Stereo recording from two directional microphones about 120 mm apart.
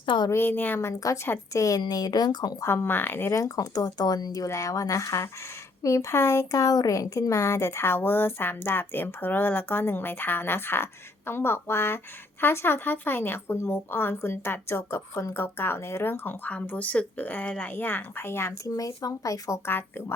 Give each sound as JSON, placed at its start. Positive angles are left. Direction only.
{"t": 0.0, "sound": "a woman's voice", "side_deg": 40}
{"t": 0.3, "sound": "a woman's voice", "side_deg": 20}
{"t": 2.6, "sound": "a woman's voice", "side_deg": 20}